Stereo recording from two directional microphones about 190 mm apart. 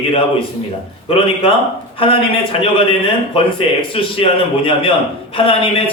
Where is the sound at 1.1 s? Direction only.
30° left (ahead or behind).